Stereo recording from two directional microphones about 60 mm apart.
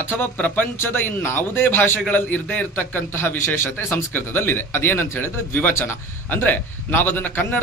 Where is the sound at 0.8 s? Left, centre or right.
Left.